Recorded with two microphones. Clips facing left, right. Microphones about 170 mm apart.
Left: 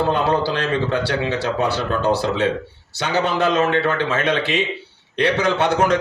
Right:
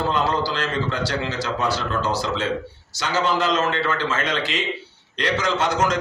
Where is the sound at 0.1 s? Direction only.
60° left (ahead or behind).